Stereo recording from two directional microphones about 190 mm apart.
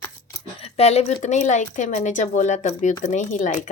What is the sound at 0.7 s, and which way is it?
Speech, 35° left (ahead or behind).